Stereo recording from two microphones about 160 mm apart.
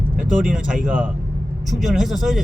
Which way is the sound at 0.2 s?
5° right (ahead or behind).